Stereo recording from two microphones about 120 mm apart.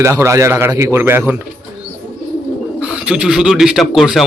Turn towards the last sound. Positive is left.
turn(degrees=0)  # may be behind; listen again after turning